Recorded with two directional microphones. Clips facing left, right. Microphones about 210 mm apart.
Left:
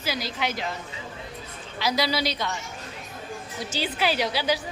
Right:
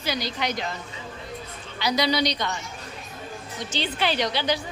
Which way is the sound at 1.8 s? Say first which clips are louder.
Right 2 dB; centre (ahead or behind).